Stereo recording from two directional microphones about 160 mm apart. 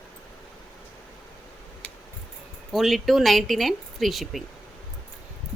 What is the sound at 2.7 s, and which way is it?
A woman's voice, centre (ahead or behind).